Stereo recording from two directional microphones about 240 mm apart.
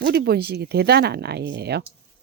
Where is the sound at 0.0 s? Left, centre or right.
Right.